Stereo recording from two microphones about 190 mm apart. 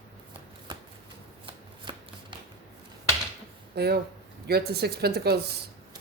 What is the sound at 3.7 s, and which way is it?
Speech, 60° right (ahead or behind).